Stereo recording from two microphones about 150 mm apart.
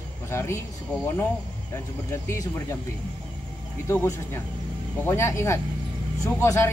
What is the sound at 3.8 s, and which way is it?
Speech, 15° left (ahead or behind).